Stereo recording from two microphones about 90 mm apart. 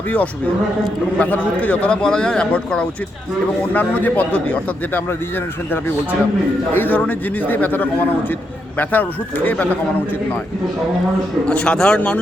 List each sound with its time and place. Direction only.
1.2 s a man's voice: 15° left (ahead or behind)
6.7 s a man's voice: 20° left (ahead or behind)
11.4 s speech: 10° left (ahead or behind)